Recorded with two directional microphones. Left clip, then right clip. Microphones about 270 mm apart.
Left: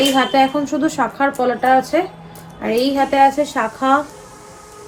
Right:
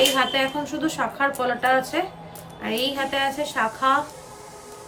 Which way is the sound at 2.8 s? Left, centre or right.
Centre.